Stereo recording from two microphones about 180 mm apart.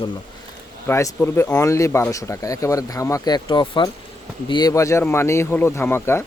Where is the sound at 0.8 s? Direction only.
15° left (ahead or behind).